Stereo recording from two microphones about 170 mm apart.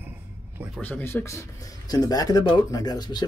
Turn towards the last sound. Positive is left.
turn(degrees=25)  # may be behind; listen again after turning